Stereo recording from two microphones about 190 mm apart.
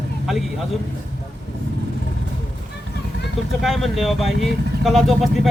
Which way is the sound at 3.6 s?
Centre (ahead or behind).